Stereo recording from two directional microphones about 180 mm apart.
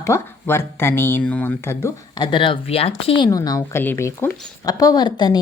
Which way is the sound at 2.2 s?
30° left (ahead or behind).